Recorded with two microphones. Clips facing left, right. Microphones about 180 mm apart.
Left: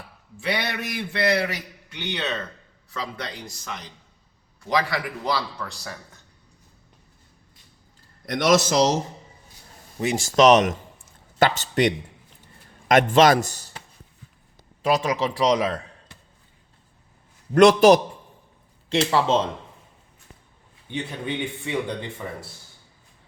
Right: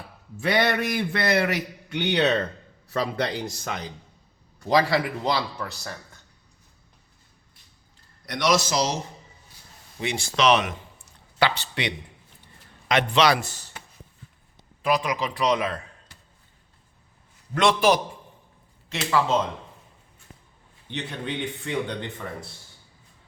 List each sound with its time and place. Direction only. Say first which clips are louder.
0.3 s a sound: right 5 dB; 45° right (ahead or behind)
1.9 s speech: right 7 dB; 65° right (ahead or behind)
4.7 s speech: right 3 dB; 30° right (ahead or behind)
8.3 s a man's voice: left 4 dB; 50° left (ahead or behind)
14.8 s speech: left 2 dB; 25° left (ahead or behind)
17.5 s a man's voice: left 7 dB; 40° left (ahead or behind)
18.9 s speech: left 3 dB; 30° left (ahead or behind)
20.9 s speech: left 2 dB; 10° left (ahead or behind)